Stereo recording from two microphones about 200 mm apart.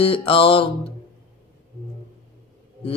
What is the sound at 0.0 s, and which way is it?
Mantra, 25° left (ahead or behind).